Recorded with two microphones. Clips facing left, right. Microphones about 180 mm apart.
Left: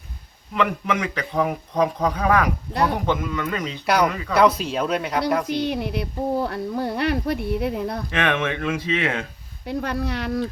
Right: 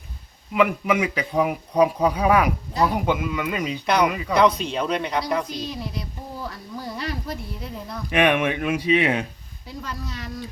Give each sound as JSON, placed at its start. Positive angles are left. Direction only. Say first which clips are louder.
{"t": 0.5, "sound": "a man's voice", "louder": "right 3 dB", "side_deg": -10}
{"t": 4.4, "sound": "speech", "louder": "left 1 dB", "side_deg": 5}
{"t": 5.5, "sound": "speech", "louder": "left 7 dB", "side_deg": 65}
{"t": 8.1, "sound": "a man's voice", "louder": "right 5 dB", "side_deg": -15}
{"t": 9.6, "sound": "speech", "louder": "left 9 dB", "side_deg": 65}